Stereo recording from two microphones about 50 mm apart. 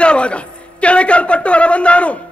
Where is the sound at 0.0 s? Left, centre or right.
Left.